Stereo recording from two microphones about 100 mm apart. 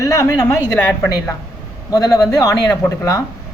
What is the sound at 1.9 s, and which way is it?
Speech, 40° left (ahead or behind).